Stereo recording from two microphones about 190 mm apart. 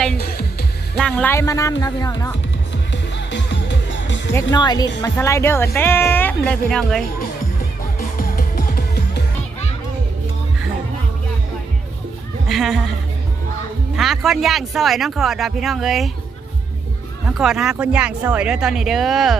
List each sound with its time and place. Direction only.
0.2 s music: 55° left (ahead or behind)
0.9 s speech: 5° left (ahead or behind); by 2.3 s 20° left (ahead or behind)
2.9 s music: 70° left (ahead or behind)
4.5 s speech: 20° left (ahead or behind); by 7.0 s 5° left (ahead or behind)
7.9 s music: 50° left (ahead or behind)
12.5 s speech: centre (ahead or behind)
13.9 s speech: centre (ahead or behind)
17.2 s speech: centre (ahead or behind)